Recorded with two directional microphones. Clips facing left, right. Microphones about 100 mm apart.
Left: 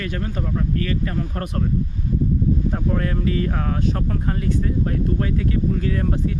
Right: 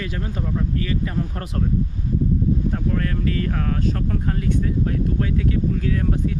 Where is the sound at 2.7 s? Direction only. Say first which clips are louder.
Left 1 dB; 15° left (ahead or behind); by 6.1 s centre (ahead or behind).